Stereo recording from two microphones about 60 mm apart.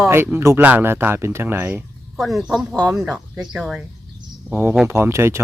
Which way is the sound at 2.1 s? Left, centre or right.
Centre.